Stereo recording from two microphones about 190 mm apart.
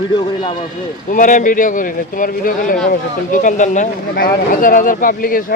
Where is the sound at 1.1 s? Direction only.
45° left (ahead or behind).